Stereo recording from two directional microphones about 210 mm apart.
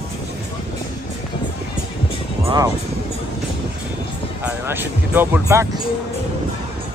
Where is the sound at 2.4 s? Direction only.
15° right (ahead or behind).